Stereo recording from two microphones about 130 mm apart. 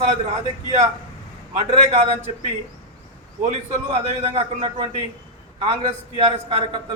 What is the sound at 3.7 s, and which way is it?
A man's voice, 55° right (ahead or behind).